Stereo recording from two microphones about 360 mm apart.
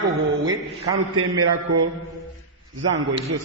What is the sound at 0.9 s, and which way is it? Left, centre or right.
Speech, right.